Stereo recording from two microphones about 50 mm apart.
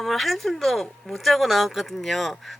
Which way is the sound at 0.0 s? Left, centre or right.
Centre.